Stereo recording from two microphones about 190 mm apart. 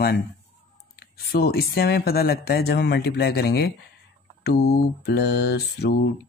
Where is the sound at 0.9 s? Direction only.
55° left (ahead or behind).